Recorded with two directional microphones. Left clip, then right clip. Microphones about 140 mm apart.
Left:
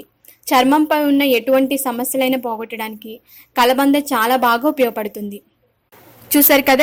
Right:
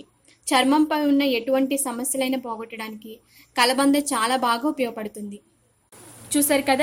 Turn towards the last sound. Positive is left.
turn(degrees=55)  # may be behind; listen again after turning